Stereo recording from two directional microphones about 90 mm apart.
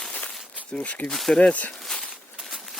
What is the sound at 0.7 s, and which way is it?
Speech, 15° left (ahead or behind).